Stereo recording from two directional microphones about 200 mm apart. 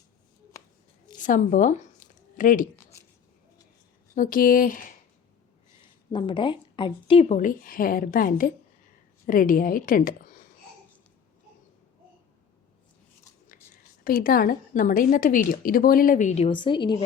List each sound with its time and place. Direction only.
1.2 s a woman's voice: 40° left (ahead or behind)
4.1 s a woman's voice: 45° left (ahead or behind)
6.1 s a woman's voice: 25° left (ahead or behind); by 10.3 s 45° left (ahead or behind)
14.0 s a woman's voice: 45° left (ahead or behind); by 17.0 s 25° left (ahead or behind)